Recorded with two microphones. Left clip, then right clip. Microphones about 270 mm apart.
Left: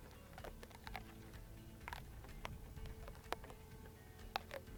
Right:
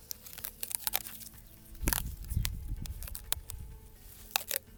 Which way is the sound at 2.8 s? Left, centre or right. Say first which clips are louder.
Right 7 dB; right.